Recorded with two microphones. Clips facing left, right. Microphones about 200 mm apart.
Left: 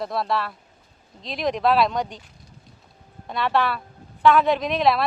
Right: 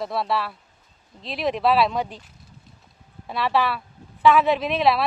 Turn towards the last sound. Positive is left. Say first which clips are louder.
# even
turn(degrees=0)  # may be behind; listen again after turning